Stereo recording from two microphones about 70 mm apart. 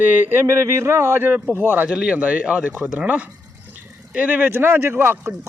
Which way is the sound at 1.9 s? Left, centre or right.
Centre.